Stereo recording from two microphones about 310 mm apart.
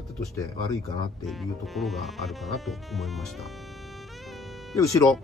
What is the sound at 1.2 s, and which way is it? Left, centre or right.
Speech, centre.